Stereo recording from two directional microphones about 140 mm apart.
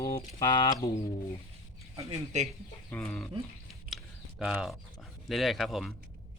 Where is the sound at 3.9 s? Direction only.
5° right (ahead or behind).